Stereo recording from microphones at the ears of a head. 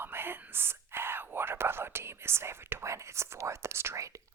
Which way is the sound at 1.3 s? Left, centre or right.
Right.